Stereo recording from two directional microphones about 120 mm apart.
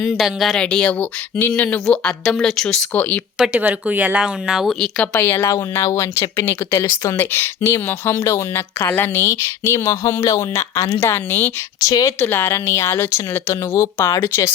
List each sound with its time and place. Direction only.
0.0 s speech: centre (ahead or behind)
3.3 s speech: 5° right (ahead or behind)
3.6 s speech: 15° right (ahead or behind)
5.1 s speech: 20° left (ahead or behind)
11.8 s speech: 30° left (ahead or behind)
12.2 s speech: 20° left (ahead or behind)